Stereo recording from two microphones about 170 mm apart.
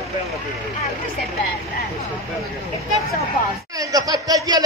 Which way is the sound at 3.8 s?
20° right (ahead or behind).